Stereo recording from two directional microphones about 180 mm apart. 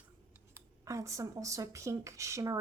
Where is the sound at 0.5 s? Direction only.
15° right (ahead or behind).